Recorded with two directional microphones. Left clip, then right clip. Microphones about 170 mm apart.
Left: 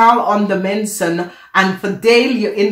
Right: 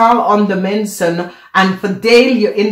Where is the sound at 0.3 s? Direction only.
30° right (ahead or behind).